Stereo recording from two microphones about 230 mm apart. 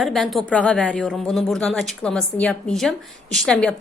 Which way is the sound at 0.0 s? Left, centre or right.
Centre.